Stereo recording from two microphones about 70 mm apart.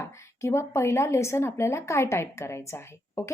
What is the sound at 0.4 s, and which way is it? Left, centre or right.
A woman's voice, left.